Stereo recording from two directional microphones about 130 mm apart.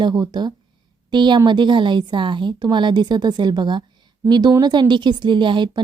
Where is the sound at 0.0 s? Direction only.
35° right (ahead or behind).